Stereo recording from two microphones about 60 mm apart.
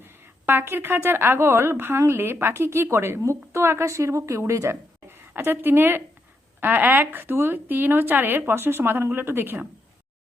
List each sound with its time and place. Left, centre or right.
0.0 s a woman's voice: right
5.0 s a woman's voice: right